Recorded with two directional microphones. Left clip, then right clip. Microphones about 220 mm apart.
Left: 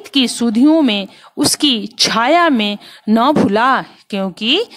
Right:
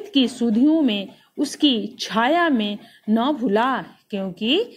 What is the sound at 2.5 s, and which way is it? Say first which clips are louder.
Speech: left 7 dB; 80° left.